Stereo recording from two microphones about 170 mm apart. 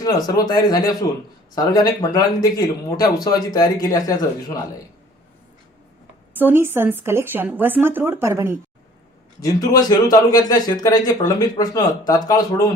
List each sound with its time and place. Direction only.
0.0 s speech: 25° left (ahead or behind)
6.3 s a woman's voice: 10° right (ahead or behind)
9.4 s speech: 20° left (ahead or behind)